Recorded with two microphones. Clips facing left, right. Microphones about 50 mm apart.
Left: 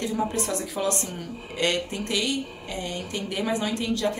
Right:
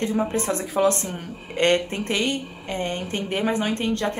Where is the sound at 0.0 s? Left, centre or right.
Right.